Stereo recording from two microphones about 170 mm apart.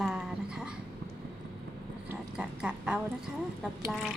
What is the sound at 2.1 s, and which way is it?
Speech, 5° right (ahead or behind).